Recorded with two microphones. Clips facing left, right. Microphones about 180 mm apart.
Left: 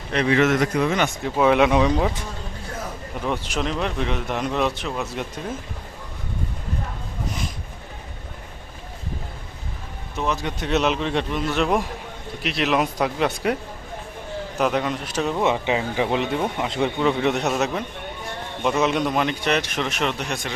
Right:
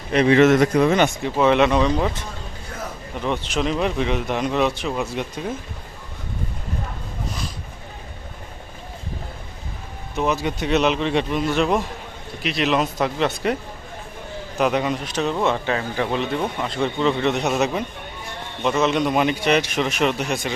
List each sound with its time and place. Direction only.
0.3 s a man's voice: 30° right (ahead or behind)
1.2 s speech: 5° left (ahead or behind)
3.2 s speech: 5° left (ahead or behind)
3.6 s a man's voice: 5° right (ahead or behind)
10.2 s a man's voice: 5° right (ahead or behind)
14.6 s a man's voice: 5° right (ahead or behind)
19.0 s a man's voice: 10° right (ahead or behind)